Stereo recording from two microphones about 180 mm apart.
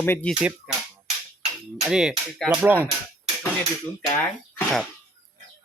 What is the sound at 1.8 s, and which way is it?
Speech, 5° right (ahead or behind).